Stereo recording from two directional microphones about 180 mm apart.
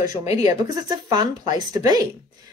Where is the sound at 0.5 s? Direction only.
20° right (ahead or behind).